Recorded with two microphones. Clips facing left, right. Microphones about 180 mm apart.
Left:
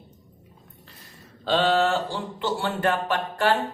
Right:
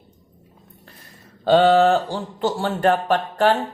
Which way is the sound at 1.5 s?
50° right (ahead or behind).